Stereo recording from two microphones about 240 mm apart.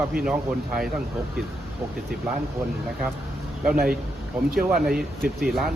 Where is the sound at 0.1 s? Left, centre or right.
Centre.